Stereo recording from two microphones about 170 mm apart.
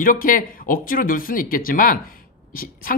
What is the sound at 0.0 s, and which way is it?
Speech, 55° left (ahead or behind).